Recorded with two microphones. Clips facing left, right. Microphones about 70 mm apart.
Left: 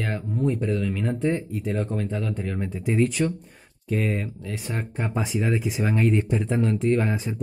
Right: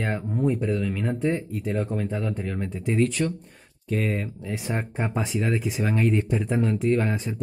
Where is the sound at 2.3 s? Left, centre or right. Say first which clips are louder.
Left 1 dB; centre.